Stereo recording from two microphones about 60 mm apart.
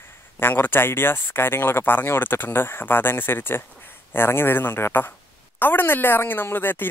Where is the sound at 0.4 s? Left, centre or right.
Left.